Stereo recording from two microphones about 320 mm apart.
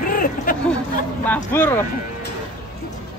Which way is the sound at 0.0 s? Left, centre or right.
Left.